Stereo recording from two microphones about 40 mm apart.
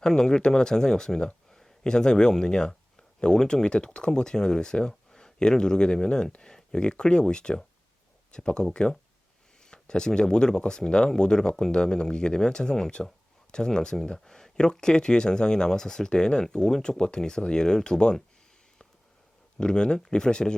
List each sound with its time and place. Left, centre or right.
0.0 s speech: centre
6.4 s a sound: centre
6.7 s speech: left
19.5 s speech: left